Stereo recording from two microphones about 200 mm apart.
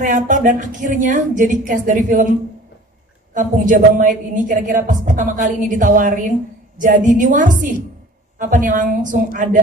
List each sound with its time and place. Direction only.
0.0 s a woman's voice: 40° right (ahead or behind)
3.3 s a woman's voice: 40° right (ahead or behind)